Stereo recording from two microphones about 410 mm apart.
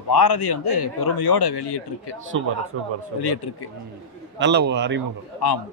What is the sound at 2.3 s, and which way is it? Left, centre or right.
Speech, right.